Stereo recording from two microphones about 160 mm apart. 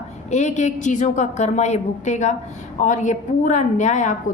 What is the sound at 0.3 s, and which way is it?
A woman's voice, 45° left (ahead or behind).